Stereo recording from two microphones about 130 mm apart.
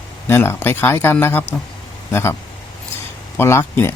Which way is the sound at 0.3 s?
20° left (ahead or behind).